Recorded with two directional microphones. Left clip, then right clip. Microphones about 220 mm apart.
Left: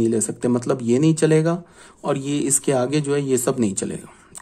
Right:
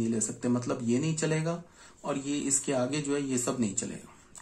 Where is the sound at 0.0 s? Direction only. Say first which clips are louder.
Left 11 dB; 45° left (ahead or behind).